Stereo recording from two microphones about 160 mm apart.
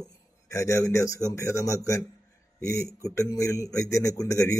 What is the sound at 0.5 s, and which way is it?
A man's voice, 20° left (ahead or behind).